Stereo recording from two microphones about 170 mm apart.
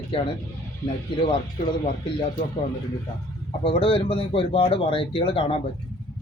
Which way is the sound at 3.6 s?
30° left (ahead or behind).